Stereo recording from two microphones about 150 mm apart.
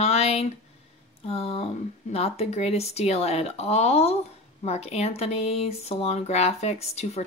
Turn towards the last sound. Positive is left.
turn(degrees=45)  # may be behind; listen again after turning